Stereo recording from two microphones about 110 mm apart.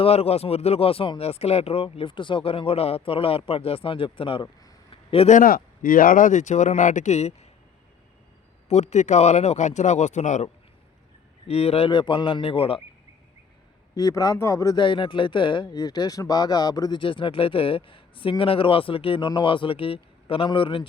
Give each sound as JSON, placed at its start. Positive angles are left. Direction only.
{"t": 0.0, "sound": "speech", "side_deg": 70}
{"t": 4.9, "sound": "a sound", "side_deg": 65}
{"t": 6.3, "sound": "speech", "side_deg": 90}
{"t": 8.7, "sound": "speech", "side_deg": 90}
{"t": 11.4, "sound": "speech", "side_deg": 70}
{"t": 11.9, "sound": "speech", "side_deg": 45}
{"t": 13.9, "sound": "speech", "side_deg": 35}
{"t": 14.8, "sound": "speech", "side_deg": 50}
{"t": 17.0, "sound": "speech", "side_deg": 50}